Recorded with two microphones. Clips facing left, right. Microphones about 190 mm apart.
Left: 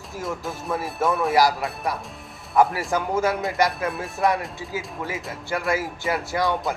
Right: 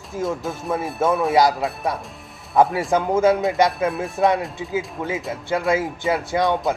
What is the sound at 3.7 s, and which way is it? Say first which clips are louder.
Speech: right 5 dB; centre (ahead or behind).